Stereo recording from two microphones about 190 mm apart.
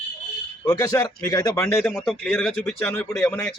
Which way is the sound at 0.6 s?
20° left (ahead or behind).